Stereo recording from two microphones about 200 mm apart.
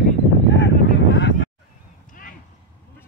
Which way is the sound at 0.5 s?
65° left (ahead or behind).